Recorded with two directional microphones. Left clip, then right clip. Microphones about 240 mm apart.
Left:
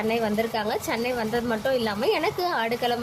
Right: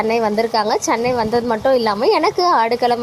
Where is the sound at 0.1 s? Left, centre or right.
Right.